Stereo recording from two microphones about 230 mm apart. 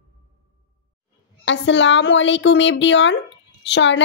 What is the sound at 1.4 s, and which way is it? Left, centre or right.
A woman's voice, left.